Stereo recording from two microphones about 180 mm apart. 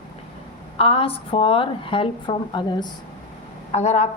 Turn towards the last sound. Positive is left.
turn(degrees=40)  # may be behind; listen again after turning